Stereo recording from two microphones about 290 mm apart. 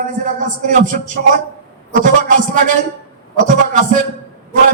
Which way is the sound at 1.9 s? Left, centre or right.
Right.